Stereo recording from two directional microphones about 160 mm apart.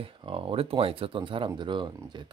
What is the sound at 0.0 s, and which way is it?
Speech, 35° right (ahead or behind).